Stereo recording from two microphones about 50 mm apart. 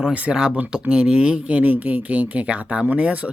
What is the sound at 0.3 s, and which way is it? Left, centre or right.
Speech, centre.